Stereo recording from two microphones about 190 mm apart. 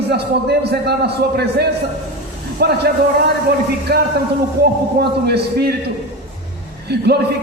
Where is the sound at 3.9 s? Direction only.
55° right (ahead or behind).